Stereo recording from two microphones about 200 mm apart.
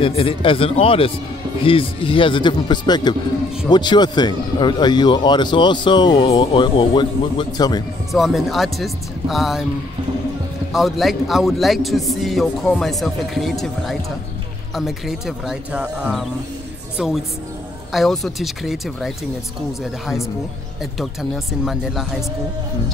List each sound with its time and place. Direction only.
0.0 s speech: 25° left (ahead or behind)
8.1 s a man's voice: centre (ahead or behind)
10.7 s a man's voice: centre (ahead or behind)
21.0 s a man's voice: centre (ahead or behind)